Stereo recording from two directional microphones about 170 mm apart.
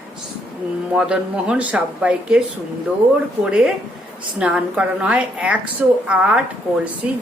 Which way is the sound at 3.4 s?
5° right (ahead or behind).